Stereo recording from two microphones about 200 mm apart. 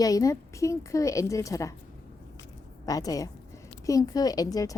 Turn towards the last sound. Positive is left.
turn(degrees=15)  # may be behind; listen again after turning